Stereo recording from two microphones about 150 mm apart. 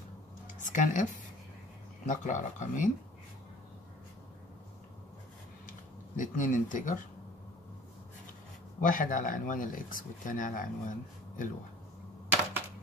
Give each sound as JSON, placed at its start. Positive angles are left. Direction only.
{"t": 0.6, "sound": "speech", "side_deg": 60}
{"t": 2.0, "sound": "speech", "side_deg": 55}
{"t": 5.7, "sound": "speech", "side_deg": 60}
{"t": 8.8, "sound": "speech", "side_deg": 65}